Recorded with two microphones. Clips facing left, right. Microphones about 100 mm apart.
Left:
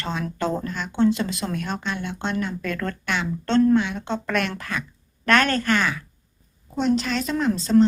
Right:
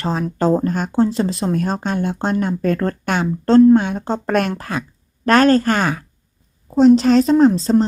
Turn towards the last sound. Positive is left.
turn(degrees=-35)  # may be behind; listen again after turning